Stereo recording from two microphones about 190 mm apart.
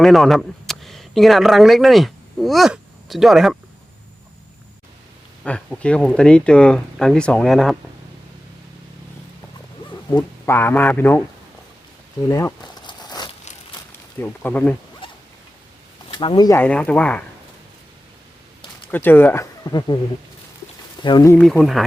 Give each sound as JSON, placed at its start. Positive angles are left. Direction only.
{"t": 0.0, "sound": "speech", "side_deg": 0}
{"t": 5.4, "sound": "speech", "side_deg": 5}
{"t": 10.2, "sound": "speech", "side_deg": 15}
{"t": 12.3, "sound": "a sound", "side_deg": 15}
{"t": 14.2, "sound": "speech", "side_deg": 10}
{"t": 15.0, "sound": "zipper", "side_deg": 25}
{"t": 16.1, "sound": "speech", "side_deg": 25}
{"t": 16.6, "sound": "speech", "side_deg": 5}
{"t": 18.9, "sound": "speech", "side_deg": 10}
{"t": 21.0, "sound": "speech", "side_deg": 20}
{"t": 21.3, "sound": "speech", "side_deg": 5}